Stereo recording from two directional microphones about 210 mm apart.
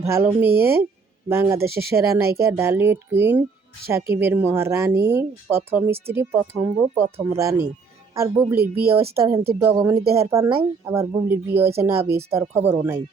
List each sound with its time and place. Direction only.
0.1 s speech: 10° right (ahead or behind)
8.6 s speech: 45° right (ahead or behind)
9.6 s speech: 10° right (ahead or behind)